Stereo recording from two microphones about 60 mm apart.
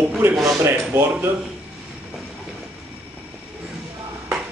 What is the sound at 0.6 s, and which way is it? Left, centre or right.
Speech, right.